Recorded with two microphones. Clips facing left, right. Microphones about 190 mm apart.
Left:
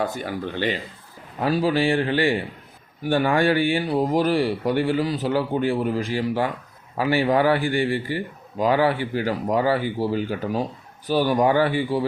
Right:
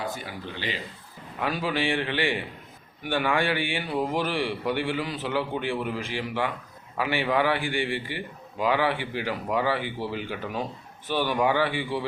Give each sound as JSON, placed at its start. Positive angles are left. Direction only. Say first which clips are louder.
{"t": 0.0, "sound": "speech", "louder": "left 8 dB", "side_deg": 50}
{"t": 1.4, "sound": "a man's voice", "louder": "left 7 dB", "side_deg": 35}